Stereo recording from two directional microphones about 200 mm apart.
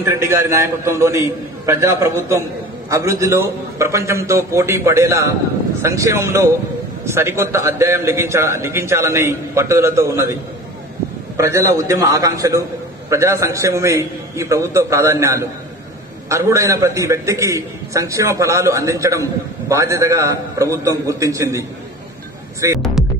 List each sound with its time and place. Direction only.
0.0 s a man's voice: 15° right (ahead or behind)
11.3 s a man's voice: 15° right (ahead or behind)